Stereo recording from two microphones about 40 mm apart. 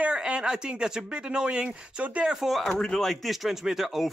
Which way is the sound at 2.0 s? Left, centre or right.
Right.